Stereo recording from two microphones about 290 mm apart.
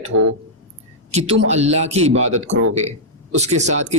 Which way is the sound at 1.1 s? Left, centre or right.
Centre.